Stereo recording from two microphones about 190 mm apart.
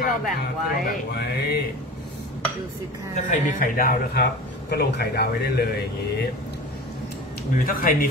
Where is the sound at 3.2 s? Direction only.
45° left (ahead or behind).